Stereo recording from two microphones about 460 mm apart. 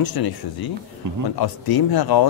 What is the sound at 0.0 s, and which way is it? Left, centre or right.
Speech, left.